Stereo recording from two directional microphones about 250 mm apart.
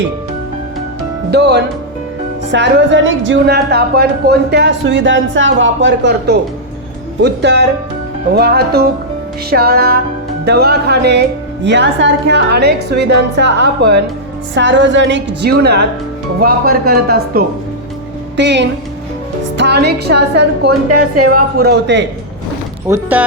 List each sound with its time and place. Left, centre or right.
1.3 s a woman's voice: right
22.9 s speech: centre